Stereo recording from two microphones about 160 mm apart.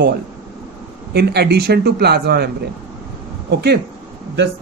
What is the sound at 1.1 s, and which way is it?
Speech, 90° right.